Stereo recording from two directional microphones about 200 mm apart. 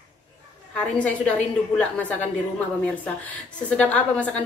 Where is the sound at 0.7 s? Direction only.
5° left (ahead or behind).